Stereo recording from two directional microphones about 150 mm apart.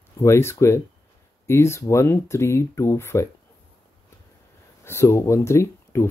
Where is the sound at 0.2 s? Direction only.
15° left (ahead or behind).